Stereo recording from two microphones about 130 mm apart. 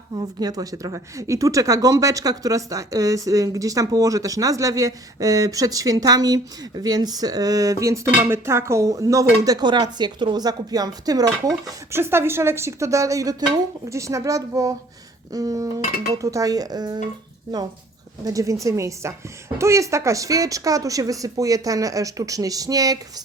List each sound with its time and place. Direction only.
0.2 s speech: 30° right (ahead or behind)
18.3 s speech: 25° right (ahead or behind)